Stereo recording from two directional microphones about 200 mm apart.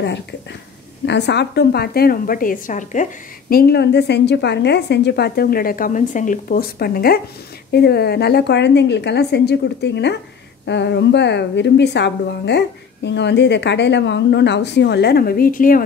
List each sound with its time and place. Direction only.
0.0 s a woman's voice: 60° left (ahead or behind); by 15.8 s 45° left (ahead or behind)